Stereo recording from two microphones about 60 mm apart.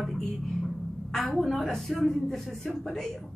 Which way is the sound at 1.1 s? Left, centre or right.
Centre.